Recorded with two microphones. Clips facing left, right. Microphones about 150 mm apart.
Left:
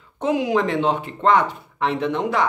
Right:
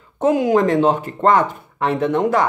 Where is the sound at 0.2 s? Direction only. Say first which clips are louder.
Right 5 dB; 45° right (ahead or behind).